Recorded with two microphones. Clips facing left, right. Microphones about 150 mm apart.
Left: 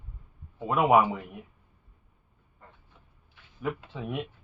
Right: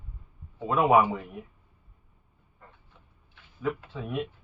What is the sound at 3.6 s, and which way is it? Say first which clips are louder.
Speech: right 2 dB; 20° left (ahead or behind).